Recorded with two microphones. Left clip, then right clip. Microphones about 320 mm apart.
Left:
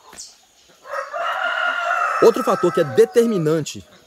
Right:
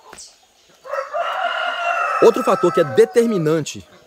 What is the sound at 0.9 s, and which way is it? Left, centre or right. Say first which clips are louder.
Chicken: right 2 dB; right.